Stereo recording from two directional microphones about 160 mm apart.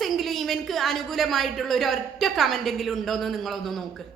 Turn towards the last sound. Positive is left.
turn(degrees=0)  # may be behind; listen again after turning